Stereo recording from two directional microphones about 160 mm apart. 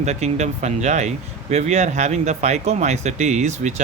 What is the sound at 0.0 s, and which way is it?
Speech, 45° right (ahead or behind).